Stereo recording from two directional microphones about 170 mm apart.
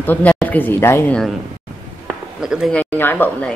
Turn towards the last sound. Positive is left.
turn(degrees=10)  # may be behind; listen again after turning